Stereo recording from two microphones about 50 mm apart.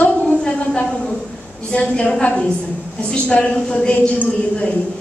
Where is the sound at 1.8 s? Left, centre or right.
Left.